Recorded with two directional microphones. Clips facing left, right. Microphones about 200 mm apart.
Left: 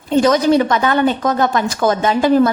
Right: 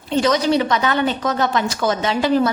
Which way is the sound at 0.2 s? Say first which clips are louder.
Left 4 dB; 50° left (ahead or behind).